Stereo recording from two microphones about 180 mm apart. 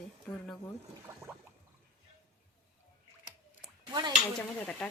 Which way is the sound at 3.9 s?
25° right (ahead or behind).